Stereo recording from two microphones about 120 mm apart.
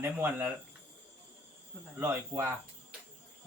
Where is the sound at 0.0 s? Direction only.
20° right (ahead or behind).